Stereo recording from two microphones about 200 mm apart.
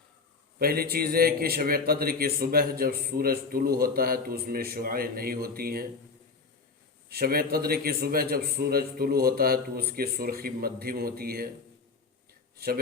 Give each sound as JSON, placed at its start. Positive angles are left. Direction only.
{"t": 0.6, "sound": "a man's voice", "side_deg": -50}
{"t": 7.1, "sound": "a man's voice", "side_deg": -50}
{"t": 12.5, "sound": "speech", "side_deg": -50}